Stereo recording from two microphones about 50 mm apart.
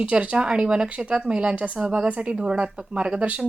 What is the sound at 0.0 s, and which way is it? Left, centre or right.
Speech, right.